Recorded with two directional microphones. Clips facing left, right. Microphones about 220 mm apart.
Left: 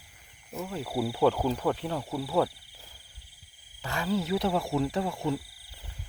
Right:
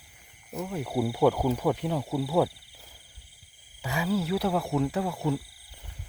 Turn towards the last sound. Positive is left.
turn(degrees=0)  # may be behind; listen again after turning